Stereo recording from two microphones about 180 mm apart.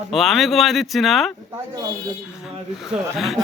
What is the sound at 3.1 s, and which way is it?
Speech, centre (ahead or behind).